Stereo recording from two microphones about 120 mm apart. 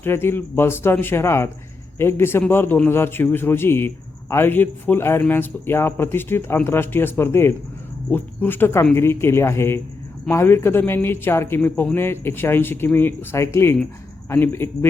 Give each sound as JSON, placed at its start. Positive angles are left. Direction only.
{"t": 0.0, "sound": "speech", "side_deg": 20}